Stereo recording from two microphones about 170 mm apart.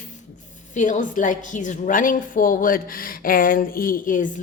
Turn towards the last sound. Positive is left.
turn(degrees=50)  # may be behind; listen again after turning